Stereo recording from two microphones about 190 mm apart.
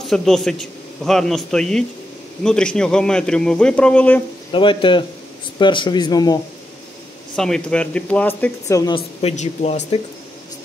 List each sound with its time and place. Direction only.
0.0 s a man's voice: centre (ahead or behind)
4.5 s speech: 25° left (ahead or behind)
7.3 s speech: 5° left (ahead or behind)
8.9 s a man's voice: 35° left (ahead or behind)